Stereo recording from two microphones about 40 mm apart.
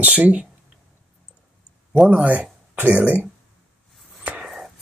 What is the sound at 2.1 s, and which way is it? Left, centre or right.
Speech, right.